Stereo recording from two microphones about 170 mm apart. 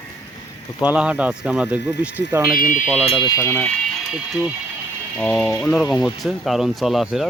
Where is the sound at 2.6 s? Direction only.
55° left (ahead or behind).